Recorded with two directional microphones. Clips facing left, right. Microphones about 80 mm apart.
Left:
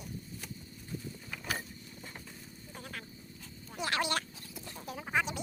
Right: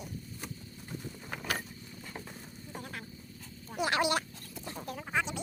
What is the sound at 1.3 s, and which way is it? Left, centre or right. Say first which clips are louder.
Vehicle: right 3 dB; right.